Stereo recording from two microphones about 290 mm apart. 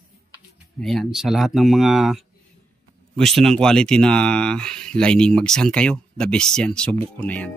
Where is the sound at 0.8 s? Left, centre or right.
Centre.